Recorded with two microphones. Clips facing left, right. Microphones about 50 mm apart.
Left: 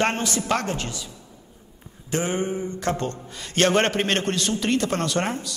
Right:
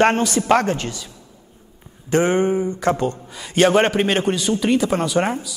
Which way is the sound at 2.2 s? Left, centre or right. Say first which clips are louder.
Right 8 dB; right.